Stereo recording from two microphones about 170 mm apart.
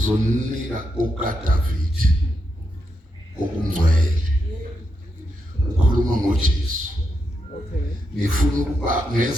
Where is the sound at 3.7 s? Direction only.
55° right (ahead or behind).